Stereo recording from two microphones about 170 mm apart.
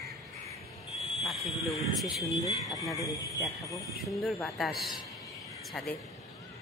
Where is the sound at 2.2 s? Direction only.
20° left (ahead or behind).